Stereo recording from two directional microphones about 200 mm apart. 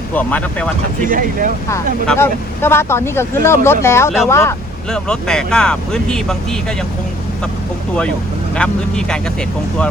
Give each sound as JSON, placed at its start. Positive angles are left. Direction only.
{"t": 0.1, "sound": "speech", "side_deg": 5}
{"t": 1.0, "sound": "speech", "side_deg": -45}
{"t": 2.0, "sound": "speech", "side_deg": 10}
{"t": 4.9, "sound": "speech", "side_deg": 5}
{"t": 8.5, "sound": "speech", "side_deg": 5}